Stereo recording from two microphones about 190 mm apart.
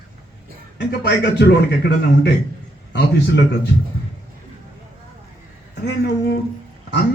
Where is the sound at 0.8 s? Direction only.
60° left (ahead or behind).